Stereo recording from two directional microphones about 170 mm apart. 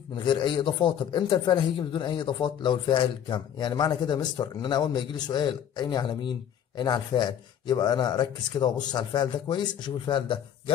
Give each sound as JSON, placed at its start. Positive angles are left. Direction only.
{"t": 0.1, "sound": "speech", "side_deg": 25}